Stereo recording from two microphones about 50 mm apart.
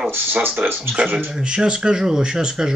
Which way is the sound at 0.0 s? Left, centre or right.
Right.